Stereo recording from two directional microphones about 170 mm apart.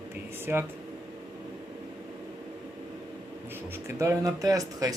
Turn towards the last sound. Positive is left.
turn(degrees=-20)  # may be behind; listen again after turning